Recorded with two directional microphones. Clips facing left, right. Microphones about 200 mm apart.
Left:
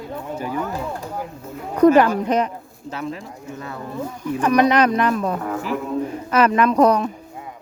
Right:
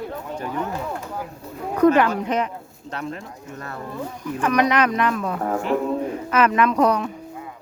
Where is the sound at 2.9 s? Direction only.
5° left (ahead or behind).